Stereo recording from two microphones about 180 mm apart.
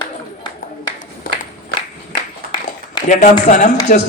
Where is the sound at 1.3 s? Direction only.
55° left (ahead or behind).